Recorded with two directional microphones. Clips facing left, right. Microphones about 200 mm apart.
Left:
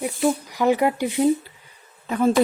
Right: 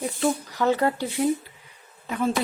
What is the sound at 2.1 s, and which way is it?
Speech, 45° left (ahead or behind).